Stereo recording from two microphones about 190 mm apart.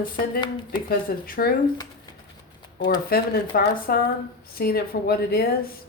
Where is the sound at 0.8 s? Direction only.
50° left (ahead or behind).